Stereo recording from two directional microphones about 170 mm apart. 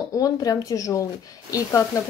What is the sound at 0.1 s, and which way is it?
Speech, 20° left (ahead or behind).